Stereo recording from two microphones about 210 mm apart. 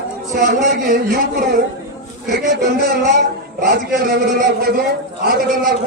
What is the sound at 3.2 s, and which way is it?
A man's voice, 45° right (ahead or behind).